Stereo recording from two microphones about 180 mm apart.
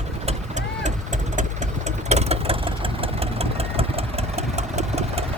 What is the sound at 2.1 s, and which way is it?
Engine, 35° right (ahead or behind).